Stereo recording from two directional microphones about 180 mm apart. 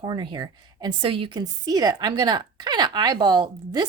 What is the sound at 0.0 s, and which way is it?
A woman's voice, 25° right (ahead or behind).